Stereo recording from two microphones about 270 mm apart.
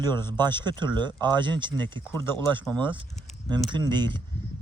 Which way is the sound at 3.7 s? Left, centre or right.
Centre.